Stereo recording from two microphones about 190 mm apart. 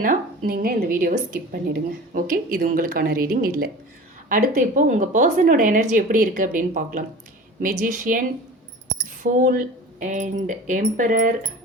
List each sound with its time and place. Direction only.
0.0 s speech: 45° right (ahead or behind)